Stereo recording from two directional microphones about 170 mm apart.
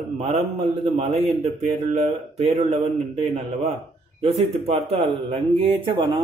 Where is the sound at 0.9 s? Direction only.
40° right (ahead or behind).